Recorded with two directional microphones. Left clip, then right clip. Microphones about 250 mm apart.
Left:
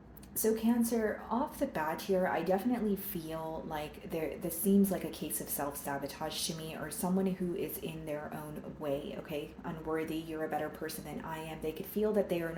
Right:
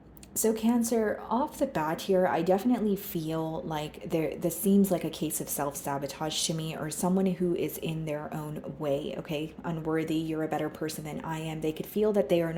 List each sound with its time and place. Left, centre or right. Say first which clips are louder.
0.4 s speech: right 4 dB; right